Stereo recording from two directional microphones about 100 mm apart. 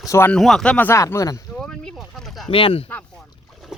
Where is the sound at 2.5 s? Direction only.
65° left (ahead or behind).